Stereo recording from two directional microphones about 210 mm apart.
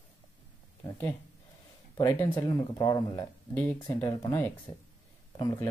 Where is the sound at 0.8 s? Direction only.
15° left (ahead or behind).